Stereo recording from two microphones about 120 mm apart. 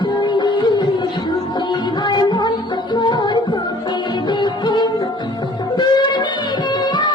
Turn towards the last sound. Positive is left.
turn(degrees=40)  # may be behind; listen again after turning